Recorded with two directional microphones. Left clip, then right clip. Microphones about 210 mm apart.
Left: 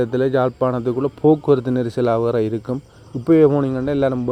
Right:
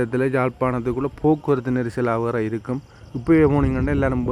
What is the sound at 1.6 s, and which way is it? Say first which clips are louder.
Speech: left 3 dB; 15° right (ahead or behind).